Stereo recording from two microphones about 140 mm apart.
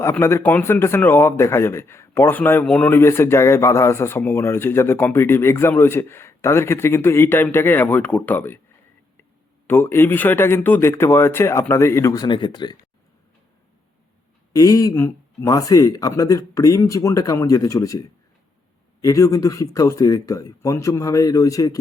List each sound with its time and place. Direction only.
0.0 s a man's voice: 20° left (ahead or behind)
9.6 s a man's voice: 15° left (ahead or behind); by 12.7 s 30° left (ahead or behind)
14.5 s speech: 25° left (ahead or behind)
19.0 s speech: 25° left (ahead or behind)